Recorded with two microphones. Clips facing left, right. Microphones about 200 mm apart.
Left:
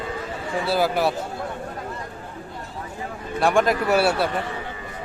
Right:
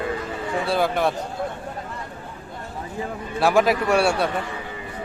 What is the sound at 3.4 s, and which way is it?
Speech, 5° right (ahead or behind).